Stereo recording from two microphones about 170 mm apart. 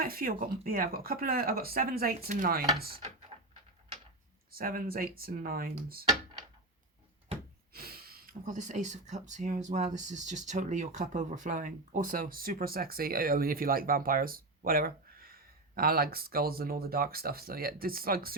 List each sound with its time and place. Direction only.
0.0 s speech: 60° right (ahead or behind)
4.5 s speech: 55° right (ahead or behind)
7.7 s speech: 65° right (ahead or behind)